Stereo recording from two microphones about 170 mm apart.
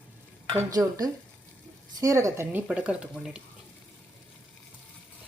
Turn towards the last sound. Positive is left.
turn(degrees=-5)  # may be behind; listen again after turning